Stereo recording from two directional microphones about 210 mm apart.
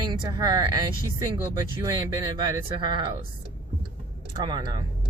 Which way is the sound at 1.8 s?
20° right (ahead or behind).